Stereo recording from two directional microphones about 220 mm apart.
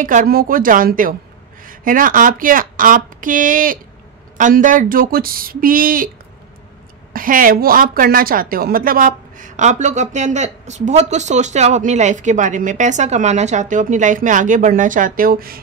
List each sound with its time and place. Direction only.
0.0 s a woman's voice: 40° right (ahead or behind)
7.1 s a woman's voice: 40° right (ahead or behind)